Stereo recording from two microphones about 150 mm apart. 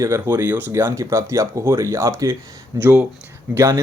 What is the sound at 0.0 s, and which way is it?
Speech, 15° right (ahead or behind).